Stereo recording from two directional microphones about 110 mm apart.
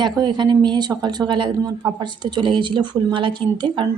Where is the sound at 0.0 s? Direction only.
40° right (ahead or behind).